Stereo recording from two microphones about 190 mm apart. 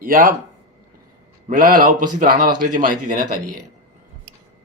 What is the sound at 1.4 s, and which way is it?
A man's voice, 45° right (ahead or behind).